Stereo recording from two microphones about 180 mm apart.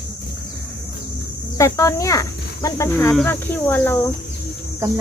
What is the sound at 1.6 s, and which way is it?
Speech, 15° left (ahead or behind).